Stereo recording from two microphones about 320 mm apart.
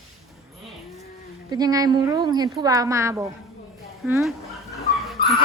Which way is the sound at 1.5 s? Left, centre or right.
Centre.